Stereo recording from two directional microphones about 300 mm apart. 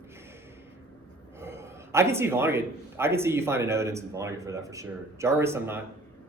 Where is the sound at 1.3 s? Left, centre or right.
Centre.